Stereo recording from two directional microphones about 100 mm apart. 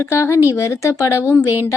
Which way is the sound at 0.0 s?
30° left (ahead or behind).